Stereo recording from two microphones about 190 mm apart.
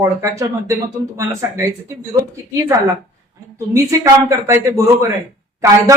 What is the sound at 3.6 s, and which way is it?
Speech, 20° right (ahead or behind).